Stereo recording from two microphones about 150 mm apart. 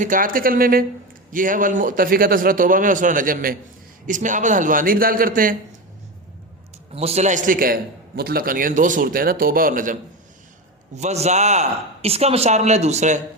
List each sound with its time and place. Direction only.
0.0 s speech: 65° right (ahead or behind)
1.3 s a man's voice: 65° right (ahead or behind)
4.0 s a man's voice: 60° right (ahead or behind)
6.9 s a man's voice: 45° right (ahead or behind); by 10.0 s 65° right (ahead or behind)
10.9 s a man's voice: 50° right (ahead or behind)